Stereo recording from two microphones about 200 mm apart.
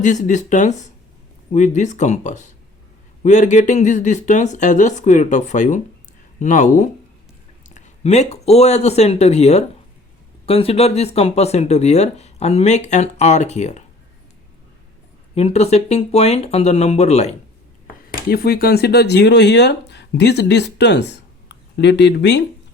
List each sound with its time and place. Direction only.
0.0 s speech: 35° left (ahead or behind)
15.4 s speech: 30° left (ahead or behind)
18.1 s speech: 50° left (ahead or behind)